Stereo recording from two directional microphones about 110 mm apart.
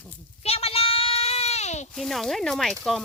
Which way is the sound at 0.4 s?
65° left (ahead or behind).